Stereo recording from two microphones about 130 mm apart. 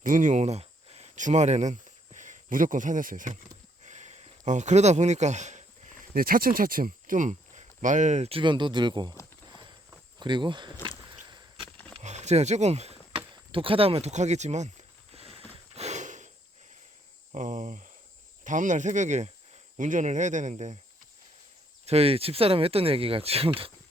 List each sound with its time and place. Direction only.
0.0 s a sound: 85° right; by 1.0 s 50° right (ahead or behind)
1.1 s speech: 65° right (ahead or behind); by 3.3 s 90° right
3.8 s speech: 65° right (ahead or behind)
8.3 s speech: 40° right (ahead or behind)
9.5 s walk: 35° right (ahead or behind)
10.2 s speech: 35° right (ahead or behind)
10.8 s a sound: 35° right (ahead or behind)
12.0 s a sound: 60° right (ahead or behind)
13.3 s a sound: 40° right (ahead or behind)
15.7 s gasp: 60° right (ahead or behind)
17.3 s speech: 75° right (ahead or behind)
21.8 s speech: 50° right (ahead or behind)